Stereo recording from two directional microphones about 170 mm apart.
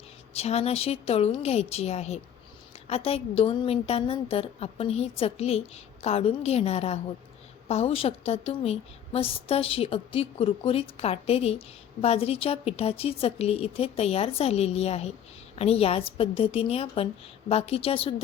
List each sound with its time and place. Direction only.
0.3 s a woman's voice: 40° left (ahead or behind)